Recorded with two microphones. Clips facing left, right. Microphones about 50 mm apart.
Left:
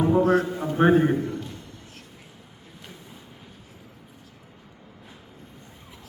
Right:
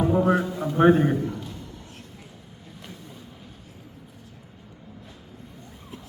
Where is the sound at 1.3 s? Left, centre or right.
Centre.